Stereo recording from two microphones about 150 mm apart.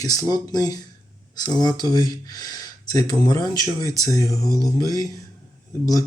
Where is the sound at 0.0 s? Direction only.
25° left (ahead or behind).